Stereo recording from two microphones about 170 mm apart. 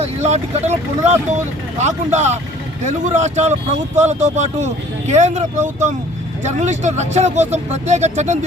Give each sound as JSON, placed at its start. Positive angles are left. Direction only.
{"t": 0.0, "sound": "speech", "side_deg": -40}